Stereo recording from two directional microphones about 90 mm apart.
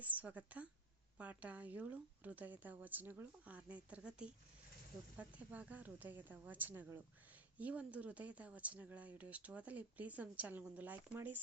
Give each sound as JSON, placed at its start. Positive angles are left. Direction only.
{"t": 0.0, "sound": "speech", "side_deg": -15}